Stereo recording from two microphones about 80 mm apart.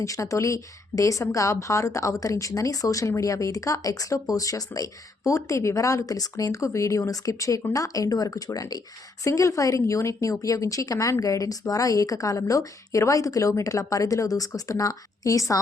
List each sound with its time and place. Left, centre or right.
0.0 s a woman's voice: left